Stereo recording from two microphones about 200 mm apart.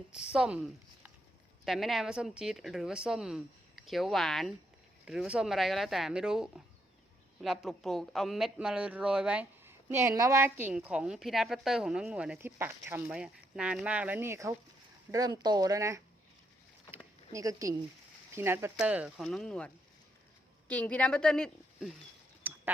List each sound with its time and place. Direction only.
0.1 s a man's voice: 5° right (ahead or behind)
17.3 s a man's voice: 15° right (ahead or behind); by 21.9 s centre (ahead or behind)
22.4 s a sound: 10° right (ahead or behind)